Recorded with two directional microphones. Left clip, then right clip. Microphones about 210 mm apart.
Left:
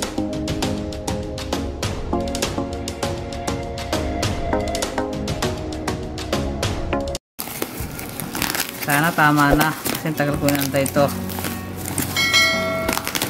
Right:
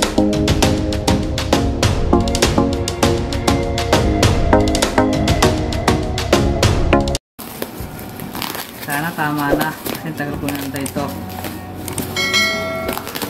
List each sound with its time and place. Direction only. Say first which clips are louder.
0.0 s music: right 9 dB; centre (ahead or behind)
9.0 s clip-clop: left 5 dB; 45° left (ahead or behind)
12.1 s church bell: even; centre (ahead or behind)